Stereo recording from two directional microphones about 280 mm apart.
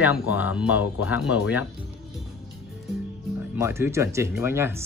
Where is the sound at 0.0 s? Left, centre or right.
Centre.